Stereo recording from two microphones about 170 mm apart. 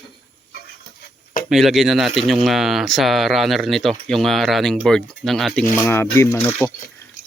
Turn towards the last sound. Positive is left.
turn(degrees=15)  # may be behind; listen again after turning